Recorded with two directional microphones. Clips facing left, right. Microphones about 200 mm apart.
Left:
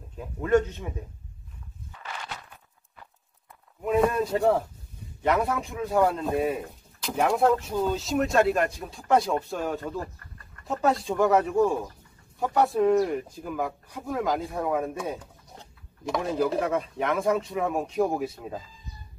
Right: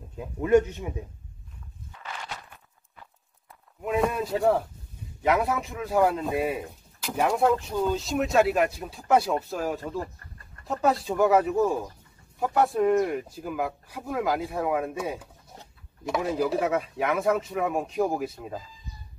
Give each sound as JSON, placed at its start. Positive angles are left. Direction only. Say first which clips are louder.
{"t": 0.2, "sound": "speech", "louder": "right 2 dB", "side_deg": -15}
{"t": 3.8, "sound": "speech", "louder": "left 3 dB", "side_deg": 0}
{"t": 9.9, "sound": "chicken", "louder": "right 1 dB", "side_deg": -30}
{"t": 10.6, "sound": "speech", "louder": "even", "side_deg": 0}